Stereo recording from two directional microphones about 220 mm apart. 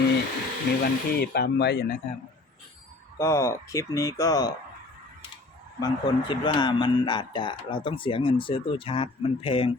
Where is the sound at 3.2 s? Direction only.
15° left (ahead or behind).